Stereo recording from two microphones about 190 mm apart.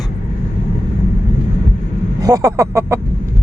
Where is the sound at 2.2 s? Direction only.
15° right (ahead or behind).